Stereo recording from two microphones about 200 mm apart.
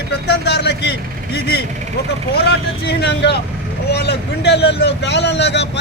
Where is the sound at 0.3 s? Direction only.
55° left (ahead or behind).